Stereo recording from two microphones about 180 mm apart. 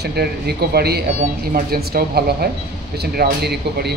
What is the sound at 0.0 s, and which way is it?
Speech, 65° right (ahead or behind).